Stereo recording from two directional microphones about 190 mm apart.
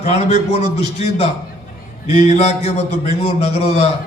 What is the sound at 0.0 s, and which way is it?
A man's voice, 35° left (ahead or behind).